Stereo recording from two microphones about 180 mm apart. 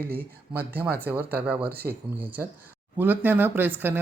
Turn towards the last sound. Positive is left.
turn(degrees=-10)  # may be behind; listen again after turning